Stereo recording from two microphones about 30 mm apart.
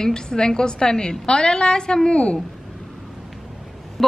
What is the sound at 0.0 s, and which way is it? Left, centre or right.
A woman's voice, left.